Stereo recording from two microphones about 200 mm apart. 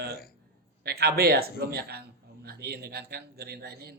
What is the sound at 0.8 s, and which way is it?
A man's voice, 50° right (ahead or behind).